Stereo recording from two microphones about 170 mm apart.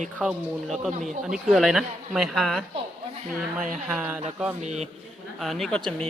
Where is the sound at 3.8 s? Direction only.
5° right (ahead or behind).